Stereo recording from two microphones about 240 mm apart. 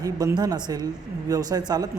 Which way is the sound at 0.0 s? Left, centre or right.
Centre.